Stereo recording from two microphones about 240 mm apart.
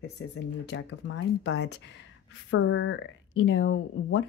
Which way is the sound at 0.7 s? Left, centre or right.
Left.